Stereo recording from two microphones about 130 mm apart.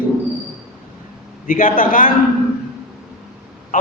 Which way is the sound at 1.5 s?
90° left.